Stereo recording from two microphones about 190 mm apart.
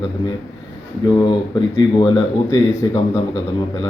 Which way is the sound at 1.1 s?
25° left (ahead or behind).